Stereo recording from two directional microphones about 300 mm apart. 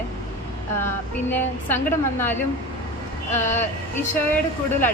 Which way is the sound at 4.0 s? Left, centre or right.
Centre.